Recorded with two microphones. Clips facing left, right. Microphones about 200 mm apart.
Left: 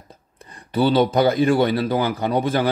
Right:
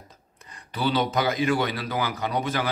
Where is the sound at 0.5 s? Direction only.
30° left (ahead or behind).